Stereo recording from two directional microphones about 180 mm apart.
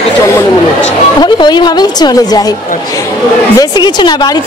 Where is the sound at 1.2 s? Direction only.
25° left (ahead or behind).